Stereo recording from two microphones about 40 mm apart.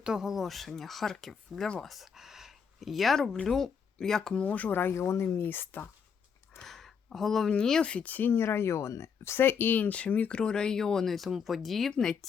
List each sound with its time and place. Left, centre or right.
0.0 s speech: centre
0.4 s speech: centre
1.8 s speech: centre
3.4 s speech: centre
4.4 s speech: left
4.7 s speech: left
6.6 s a sound: centre
7.5 s speech: centre
7.8 s speech: left
8.0 s speech: left
8.3 s speech: left
9.9 s speech: left
10.3 s speech: left
11.1 s speech: centre